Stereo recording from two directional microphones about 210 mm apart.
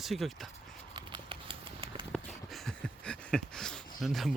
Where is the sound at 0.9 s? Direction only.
20° right (ahead or behind).